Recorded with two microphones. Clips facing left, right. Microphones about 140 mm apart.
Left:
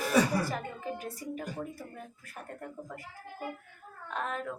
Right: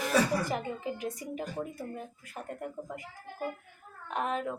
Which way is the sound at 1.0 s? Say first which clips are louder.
Right 2 dB; 20° right (ahead or behind).